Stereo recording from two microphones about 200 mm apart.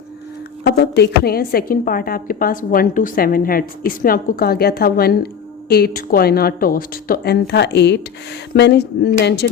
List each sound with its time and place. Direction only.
0.6 s speech: 55° left (ahead or behind)